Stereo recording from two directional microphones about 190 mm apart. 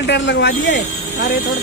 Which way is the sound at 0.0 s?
70° left (ahead or behind).